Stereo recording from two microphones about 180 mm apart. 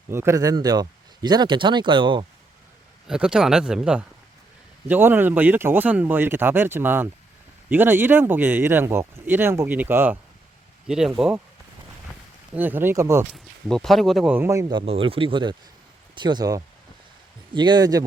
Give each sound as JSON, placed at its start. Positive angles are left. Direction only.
{"t": 0.1, "sound": "speech", "side_deg": -15}
{"t": 3.1, "sound": "speech", "side_deg": -5}
{"t": 12.5, "sound": "speech", "side_deg": -10}
{"t": 13.3, "sound": "speech", "side_deg": 0}
{"t": 14.3, "sound": "speech", "side_deg": -15}